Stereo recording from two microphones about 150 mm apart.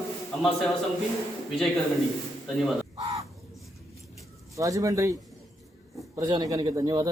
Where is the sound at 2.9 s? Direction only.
25° right (ahead or behind).